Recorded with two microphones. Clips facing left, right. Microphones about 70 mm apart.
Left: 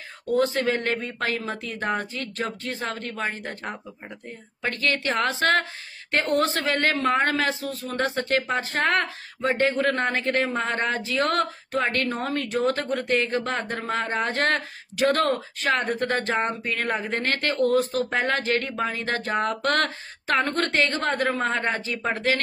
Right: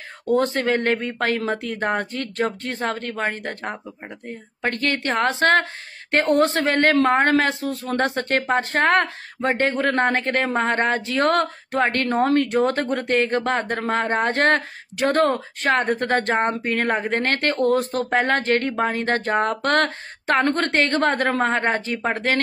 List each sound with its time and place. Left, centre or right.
0.3 s speech: right
12.9 s speech: right
15.0 s speech: right
15.3 s speech: right